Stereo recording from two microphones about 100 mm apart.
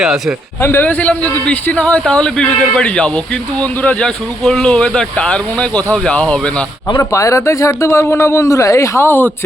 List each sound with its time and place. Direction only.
0.0 s speech: 5° right (ahead or behind)
0.6 s speech: 20° left (ahead or behind)
7.0 s speech: 30° left (ahead or behind)